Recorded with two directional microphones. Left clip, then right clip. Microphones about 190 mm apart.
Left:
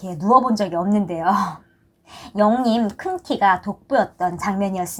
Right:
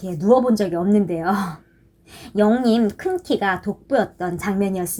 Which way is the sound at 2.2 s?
10° left (ahead or behind).